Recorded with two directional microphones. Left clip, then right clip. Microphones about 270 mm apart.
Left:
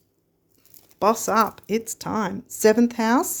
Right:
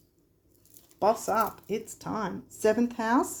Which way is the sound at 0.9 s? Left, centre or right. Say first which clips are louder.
Left 6 dB; left.